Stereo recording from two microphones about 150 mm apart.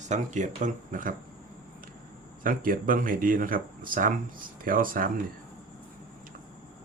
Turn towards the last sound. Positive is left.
turn(degrees=-65)  # may be behind; listen again after turning